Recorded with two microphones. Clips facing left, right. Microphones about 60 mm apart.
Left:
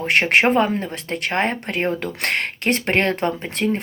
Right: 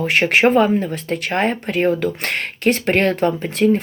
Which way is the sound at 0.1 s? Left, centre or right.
Left.